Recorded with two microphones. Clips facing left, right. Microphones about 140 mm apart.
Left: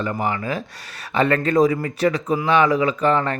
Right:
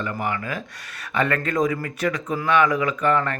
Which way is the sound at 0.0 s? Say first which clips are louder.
Left 3 dB; 30° left (ahead or behind).